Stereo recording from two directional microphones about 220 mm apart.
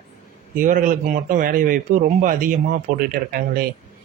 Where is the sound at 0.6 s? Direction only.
35° right (ahead or behind).